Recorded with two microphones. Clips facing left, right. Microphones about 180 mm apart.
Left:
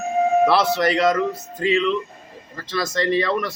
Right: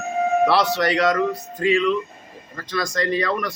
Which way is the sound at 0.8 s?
25° left (ahead or behind).